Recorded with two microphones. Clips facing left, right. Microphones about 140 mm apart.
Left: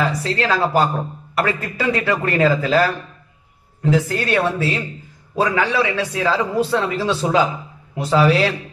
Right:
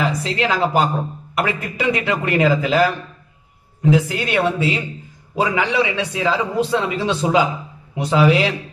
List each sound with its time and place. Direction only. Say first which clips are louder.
0.2 s a man's voice: even; 20° right (ahead or behind)
3.9 s a man's voice: even; 15° right (ahead or behind)